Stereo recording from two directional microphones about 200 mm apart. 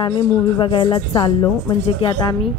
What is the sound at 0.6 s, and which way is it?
Speech, 25° left (ahead or behind).